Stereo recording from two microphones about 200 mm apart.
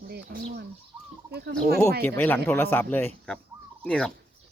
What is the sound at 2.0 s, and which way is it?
Speech, 10° left (ahead or behind).